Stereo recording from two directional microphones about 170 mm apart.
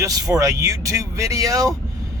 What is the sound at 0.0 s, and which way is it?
Speech, 20° right (ahead or behind).